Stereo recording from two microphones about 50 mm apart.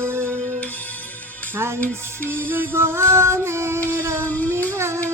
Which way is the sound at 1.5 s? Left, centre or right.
Right.